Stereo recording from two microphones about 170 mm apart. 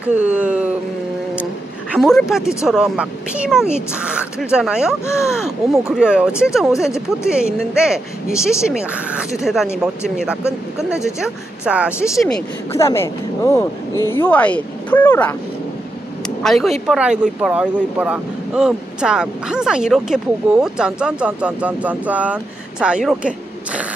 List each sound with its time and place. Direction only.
0.0 s speech: 5° right (ahead or behind)
1.3 s a sound: 5° right (ahead or behind)
2.0 s speech: centre (ahead or behind)
5.0 s speech: 15° left (ahead or behind)
5.4 s speech: 5° right (ahead or behind)
12.7 s speech: 15° left (ahead or behind)
16.4 s speech: centre (ahead or behind)